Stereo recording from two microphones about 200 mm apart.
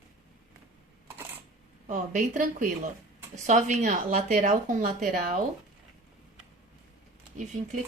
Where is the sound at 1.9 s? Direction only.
40° right (ahead or behind).